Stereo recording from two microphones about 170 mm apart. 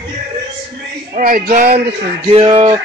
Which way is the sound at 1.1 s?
50° right (ahead or behind).